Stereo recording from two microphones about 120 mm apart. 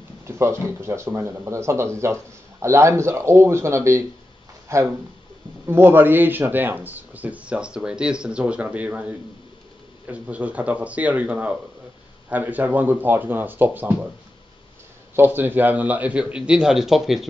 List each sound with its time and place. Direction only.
0.3 s speech: 20° right (ahead or behind)
15.1 s speech: 15° right (ahead or behind)